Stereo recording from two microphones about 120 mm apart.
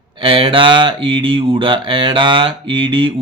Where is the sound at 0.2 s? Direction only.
45° right (ahead or behind).